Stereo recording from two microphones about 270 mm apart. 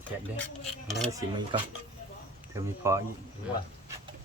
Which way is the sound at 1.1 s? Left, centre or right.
Centre.